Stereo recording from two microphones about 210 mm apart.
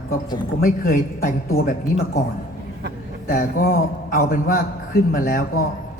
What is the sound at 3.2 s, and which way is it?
A man's voice, 40° left (ahead or behind).